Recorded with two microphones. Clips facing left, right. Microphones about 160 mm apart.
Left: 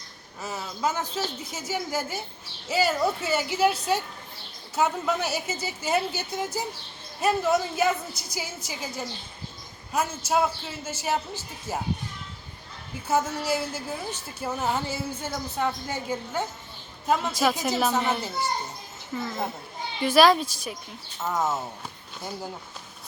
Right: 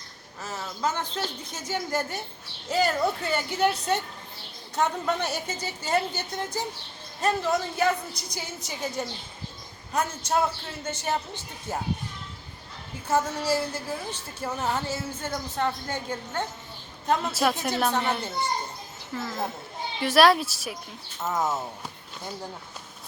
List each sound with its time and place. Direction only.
0.4 s a woman's voice: 10° left (ahead or behind)
13.1 s a woman's voice: 10° left (ahead or behind)